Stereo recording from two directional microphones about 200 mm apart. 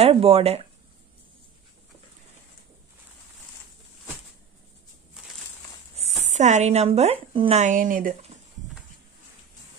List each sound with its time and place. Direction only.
0.0 s speech: 30° right (ahead or behind)
6.2 s speech: 35° right (ahead or behind)